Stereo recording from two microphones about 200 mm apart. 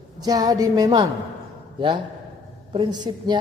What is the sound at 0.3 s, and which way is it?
Speech, 20° right (ahead or behind).